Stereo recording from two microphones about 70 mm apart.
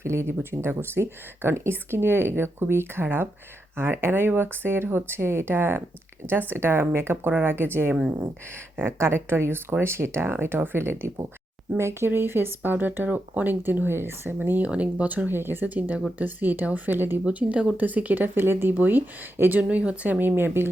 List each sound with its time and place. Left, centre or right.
0.0 s speech: right
17.2 s speech: centre
17.7 s speech: right
19.6 s speech: centre
20.1 s speech: right